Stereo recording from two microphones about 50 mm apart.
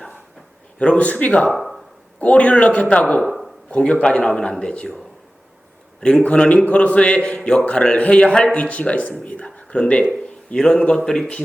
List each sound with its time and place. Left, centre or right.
0.8 s a man's voice: left
1.5 s a sound: centre
2.2 s a man's voice: left
6.0 s a man's voice: centre